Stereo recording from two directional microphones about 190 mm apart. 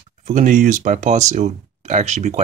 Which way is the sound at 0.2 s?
40° right (ahead or behind).